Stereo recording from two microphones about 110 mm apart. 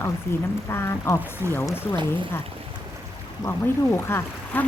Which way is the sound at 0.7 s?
25° left (ahead or behind).